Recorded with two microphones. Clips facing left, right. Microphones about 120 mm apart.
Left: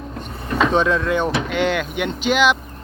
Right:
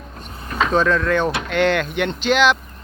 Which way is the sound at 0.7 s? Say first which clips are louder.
Right 3 dB; 20° left (ahead or behind).